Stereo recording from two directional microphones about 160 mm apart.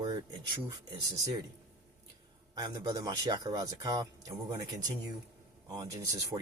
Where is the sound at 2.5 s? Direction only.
25° right (ahead or behind).